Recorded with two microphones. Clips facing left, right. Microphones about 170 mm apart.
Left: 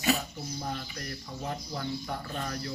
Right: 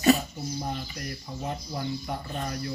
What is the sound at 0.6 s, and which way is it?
Bird, 15° right (ahead or behind).